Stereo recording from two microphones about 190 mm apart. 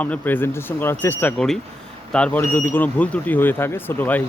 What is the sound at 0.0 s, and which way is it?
Speech, 10° left (ahead or behind).